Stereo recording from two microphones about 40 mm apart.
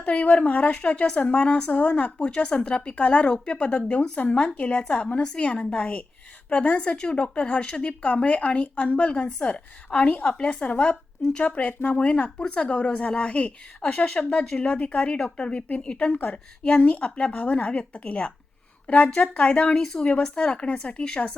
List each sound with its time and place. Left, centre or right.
0.0 s a woman's voice: left
3.2 s a woman's voice: left
11.4 s a woman's voice: left
19.7 s speech: centre